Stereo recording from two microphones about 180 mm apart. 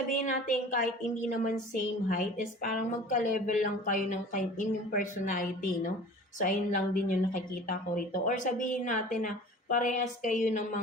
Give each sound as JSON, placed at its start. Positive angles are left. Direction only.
{"t": 0.1, "sound": "a woman's voice", "side_deg": 45}